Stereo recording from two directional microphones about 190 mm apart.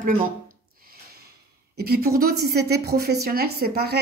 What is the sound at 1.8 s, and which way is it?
A woman's voice, 50° right (ahead or behind).